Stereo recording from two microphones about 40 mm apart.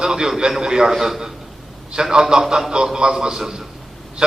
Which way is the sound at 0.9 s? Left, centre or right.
Centre.